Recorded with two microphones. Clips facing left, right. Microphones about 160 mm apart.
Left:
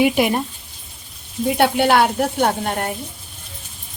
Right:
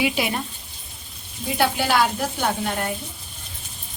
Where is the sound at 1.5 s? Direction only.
60° left (ahead or behind).